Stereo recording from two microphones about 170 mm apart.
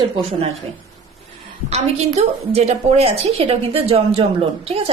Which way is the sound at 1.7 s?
40° right (ahead or behind).